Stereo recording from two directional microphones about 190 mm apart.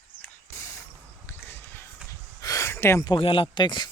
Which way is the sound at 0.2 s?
15° left (ahead or behind).